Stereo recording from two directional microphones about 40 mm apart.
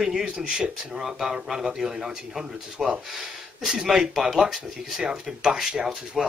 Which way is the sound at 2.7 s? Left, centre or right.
Right.